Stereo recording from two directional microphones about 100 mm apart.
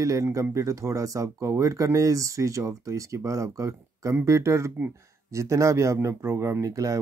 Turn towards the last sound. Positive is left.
turn(degrees=-35)  # may be behind; listen again after turning